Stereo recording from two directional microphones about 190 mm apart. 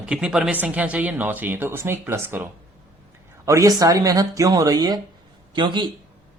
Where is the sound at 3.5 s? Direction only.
15° right (ahead or behind).